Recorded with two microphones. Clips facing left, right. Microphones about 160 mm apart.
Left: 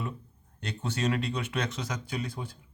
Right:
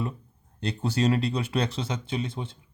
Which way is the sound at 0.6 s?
35° right (ahead or behind).